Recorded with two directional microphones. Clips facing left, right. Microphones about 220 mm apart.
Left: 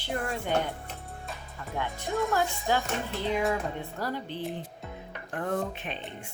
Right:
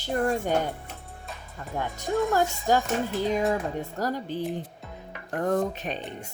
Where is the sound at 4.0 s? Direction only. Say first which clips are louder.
Right 4 dB; 40° right (ahead or behind).